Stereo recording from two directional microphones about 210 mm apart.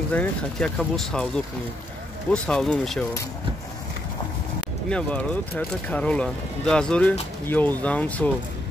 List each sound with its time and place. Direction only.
0.1 s speech: 5° left (ahead or behind)
4.8 s speech: 5° left (ahead or behind)